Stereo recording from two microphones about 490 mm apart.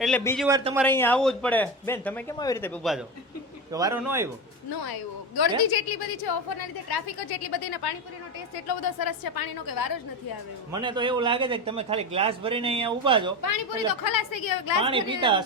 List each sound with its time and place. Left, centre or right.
0.0 s speech: centre
0.9 s speech: centre
4.7 s a woman's voice: left
10.7 s a man's voice: centre
14.0 s a woman's voice: left
14.8 s a man's voice: centre